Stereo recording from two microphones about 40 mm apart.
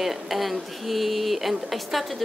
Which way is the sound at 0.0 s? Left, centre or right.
Centre.